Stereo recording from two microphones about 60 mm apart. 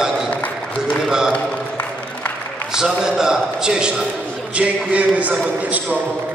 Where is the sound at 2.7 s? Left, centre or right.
Centre.